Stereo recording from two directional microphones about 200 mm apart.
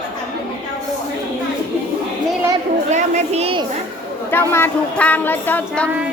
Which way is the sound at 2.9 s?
35° right (ahead or behind).